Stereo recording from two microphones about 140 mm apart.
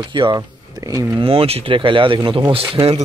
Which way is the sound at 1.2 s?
45° right (ahead or behind).